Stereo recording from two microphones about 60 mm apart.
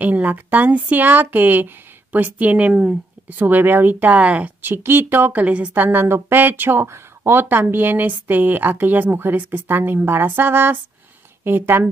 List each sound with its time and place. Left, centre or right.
0.0 s a woman's voice: right
3.3 s speech: right
4.6 s speech: right
5.8 s speech: right